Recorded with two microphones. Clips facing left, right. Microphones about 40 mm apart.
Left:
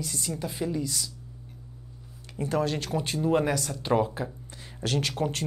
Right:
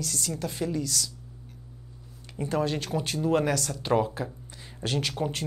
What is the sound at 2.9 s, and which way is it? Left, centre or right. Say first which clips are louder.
Speech: left 1 dB; left.